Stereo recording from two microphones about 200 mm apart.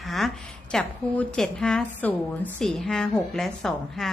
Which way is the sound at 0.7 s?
5° left (ahead or behind).